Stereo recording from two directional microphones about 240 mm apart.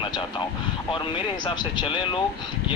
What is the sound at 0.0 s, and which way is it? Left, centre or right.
Vehicle, left.